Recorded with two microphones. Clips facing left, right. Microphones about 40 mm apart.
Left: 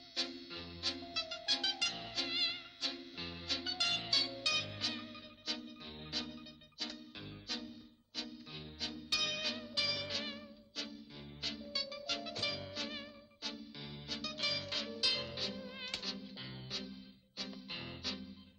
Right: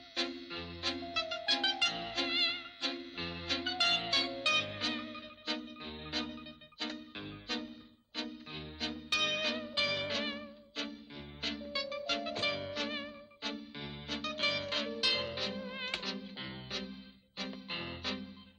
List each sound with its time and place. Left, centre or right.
0.2 s music: centre
5.8 s music: right
6.1 s music: centre